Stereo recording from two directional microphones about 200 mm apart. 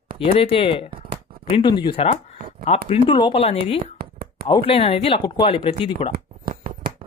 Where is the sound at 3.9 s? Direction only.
50° right (ahead or behind).